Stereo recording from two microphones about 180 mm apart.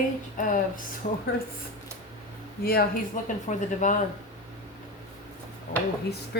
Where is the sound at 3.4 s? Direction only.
45° left (ahead or behind).